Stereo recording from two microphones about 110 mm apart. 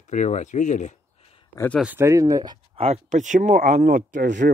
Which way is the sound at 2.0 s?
30° right (ahead or behind).